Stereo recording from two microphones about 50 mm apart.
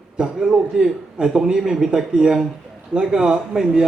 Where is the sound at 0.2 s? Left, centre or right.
Centre.